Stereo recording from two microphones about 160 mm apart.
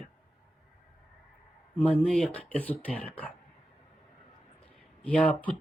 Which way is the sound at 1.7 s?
10° left (ahead or behind).